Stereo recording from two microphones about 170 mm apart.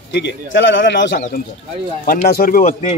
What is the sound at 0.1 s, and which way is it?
Speech, 90° left.